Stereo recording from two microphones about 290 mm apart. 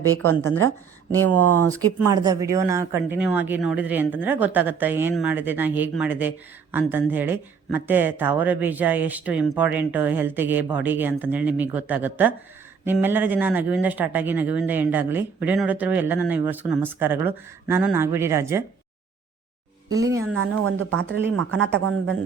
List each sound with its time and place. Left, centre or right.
0.2 s speech: centre
2.0 s speech: centre
20.3 s speech: right